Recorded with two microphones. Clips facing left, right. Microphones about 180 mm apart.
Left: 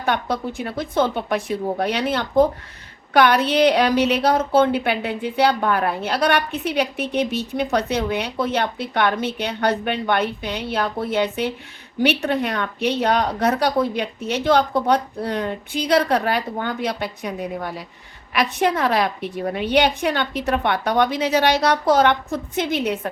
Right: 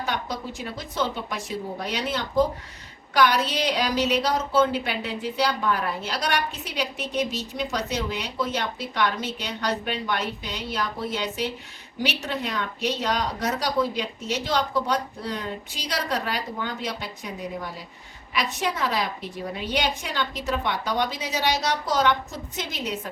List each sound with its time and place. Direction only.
0.0 s a woman's voice: 60° left (ahead or behind)